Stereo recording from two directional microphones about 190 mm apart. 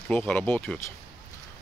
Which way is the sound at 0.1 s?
10° left (ahead or behind).